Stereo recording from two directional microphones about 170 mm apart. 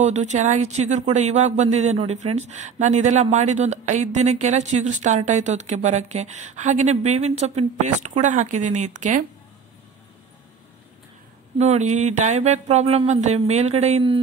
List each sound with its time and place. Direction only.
0.0 s a man's voice: 45° right (ahead or behind)
11.5 s speech: 40° right (ahead or behind)